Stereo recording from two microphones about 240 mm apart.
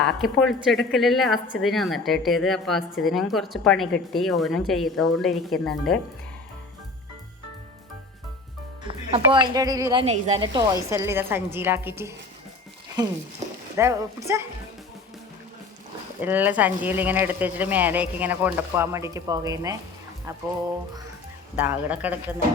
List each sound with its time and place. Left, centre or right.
0.0 s a woman's voice: centre
8.9 s a woman's voice: right
16.2 s speech: centre
21.5 s speech: centre